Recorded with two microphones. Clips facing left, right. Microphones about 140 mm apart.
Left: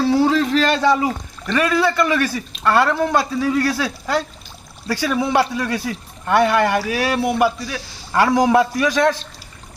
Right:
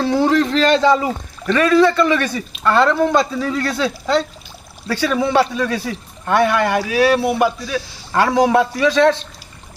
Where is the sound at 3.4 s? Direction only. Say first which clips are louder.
Left 1 dB; 10° left (ahead or behind).